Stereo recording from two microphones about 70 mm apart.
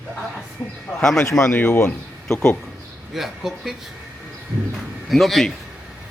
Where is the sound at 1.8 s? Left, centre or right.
Centre.